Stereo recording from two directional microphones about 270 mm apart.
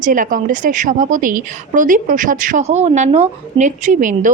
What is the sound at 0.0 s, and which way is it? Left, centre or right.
A woman's voice, right.